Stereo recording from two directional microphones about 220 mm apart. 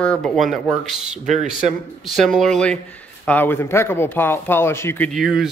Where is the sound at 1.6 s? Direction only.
Centre (ahead or behind).